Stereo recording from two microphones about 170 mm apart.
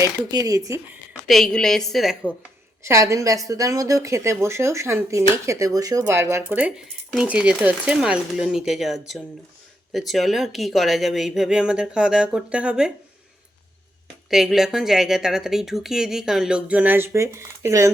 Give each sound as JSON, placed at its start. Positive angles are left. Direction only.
{"t": 0.0, "sound": "speech", "side_deg": -20}
{"t": 1.3, "sound": "speech", "side_deg": 0}
{"t": 2.8, "sound": "a woman's voice", "side_deg": -15}
{"t": 14.3, "sound": "speech", "side_deg": 0}